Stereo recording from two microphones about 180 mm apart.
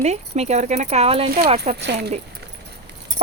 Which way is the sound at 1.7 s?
70° right (ahead or behind).